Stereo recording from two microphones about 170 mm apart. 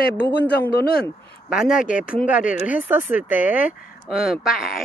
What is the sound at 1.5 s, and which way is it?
Speech, 5° right (ahead or behind).